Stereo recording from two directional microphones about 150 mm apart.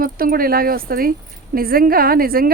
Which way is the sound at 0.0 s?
75° right (ahead or behind).